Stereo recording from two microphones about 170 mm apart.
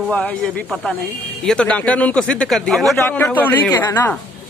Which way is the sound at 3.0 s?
15° left (ahead or behind).